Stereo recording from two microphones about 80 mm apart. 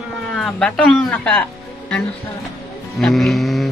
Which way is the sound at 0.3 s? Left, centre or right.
Centre.